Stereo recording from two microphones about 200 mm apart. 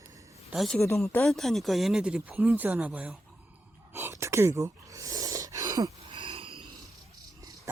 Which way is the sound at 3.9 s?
15° right (ahead or behind).